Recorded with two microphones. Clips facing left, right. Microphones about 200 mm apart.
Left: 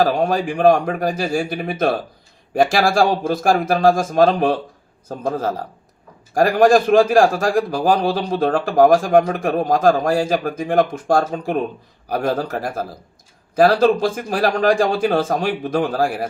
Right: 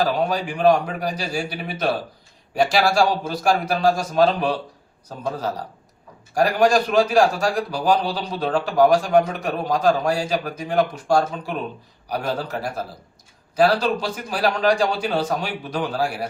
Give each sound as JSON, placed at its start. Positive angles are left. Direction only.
{"t": 0.0, "sound": "a man's voice", "side_deg": 50}